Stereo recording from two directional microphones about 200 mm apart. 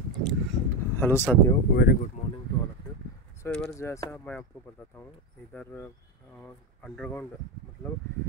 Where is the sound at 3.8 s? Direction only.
15° left (ahead or behind).